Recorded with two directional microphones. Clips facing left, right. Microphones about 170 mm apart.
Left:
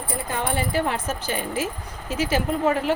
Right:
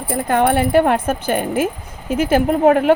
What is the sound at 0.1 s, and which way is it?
Speech, 65° right (ahead or behind).